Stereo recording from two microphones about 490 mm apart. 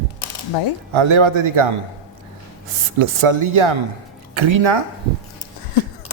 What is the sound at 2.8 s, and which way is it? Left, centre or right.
Speech, right.